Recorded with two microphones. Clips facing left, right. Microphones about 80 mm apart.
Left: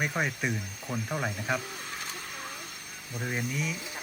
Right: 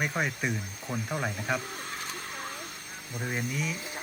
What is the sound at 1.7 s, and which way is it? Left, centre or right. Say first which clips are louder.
Vehicle: right 1 dB; right.